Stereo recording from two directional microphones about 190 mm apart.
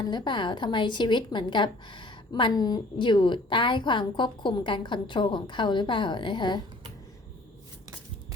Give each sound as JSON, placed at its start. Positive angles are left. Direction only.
{"t": 0.0, "sound": "a woman's voice", "side_deg": 25}